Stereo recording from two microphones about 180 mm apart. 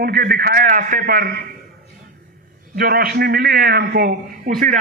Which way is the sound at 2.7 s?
55° right (ahead or behind).